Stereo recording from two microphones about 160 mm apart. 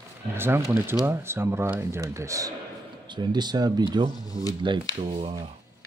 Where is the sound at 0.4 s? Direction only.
15° right (ahead or behind).